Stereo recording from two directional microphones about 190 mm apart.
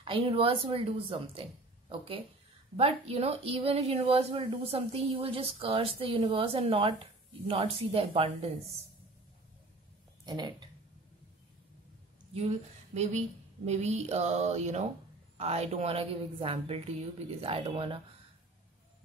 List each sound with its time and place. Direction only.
0.0 s speech: 30° right (ahead or behind)
10.2 s speech: 20° right (ahead or behind)
12.4 s a woman's voice: 35° right (ahead or behind)